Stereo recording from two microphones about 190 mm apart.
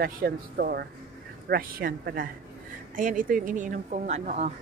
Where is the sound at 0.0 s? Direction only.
50° right (ahead or behind).